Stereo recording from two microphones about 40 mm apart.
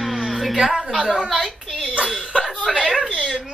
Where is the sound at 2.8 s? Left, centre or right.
Centre.